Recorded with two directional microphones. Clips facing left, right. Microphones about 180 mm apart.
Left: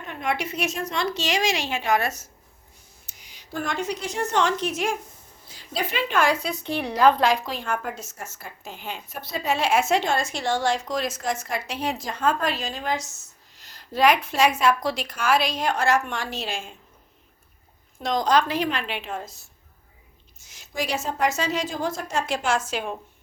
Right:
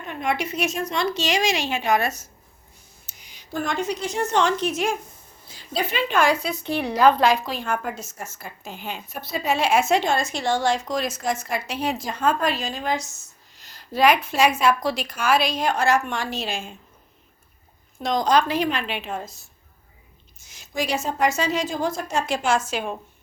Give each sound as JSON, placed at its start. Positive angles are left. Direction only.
{"t": 0.1, "sound": "a woman's voice", "side_deg": -20}
{"t": 6.5, "sound": "a woman's voice", "side_deg": -5}
{"t": 18.0, "sound": "a woman's voice", "side_deg": -15}
{"t": 20.5, "sound": "a woman's voice", "side_deg": -15}